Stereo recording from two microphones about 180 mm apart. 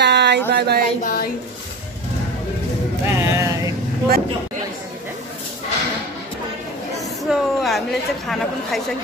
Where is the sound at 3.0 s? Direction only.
15° right (ahead or behind).